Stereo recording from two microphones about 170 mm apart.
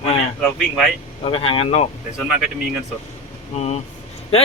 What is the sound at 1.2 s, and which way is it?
Speech, 35° left (ahead or behind).